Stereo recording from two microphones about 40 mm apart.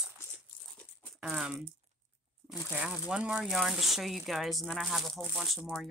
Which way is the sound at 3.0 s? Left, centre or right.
Right.